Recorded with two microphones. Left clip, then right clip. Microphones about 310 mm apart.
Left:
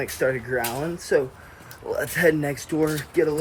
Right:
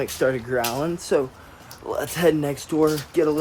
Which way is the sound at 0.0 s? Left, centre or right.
Centre.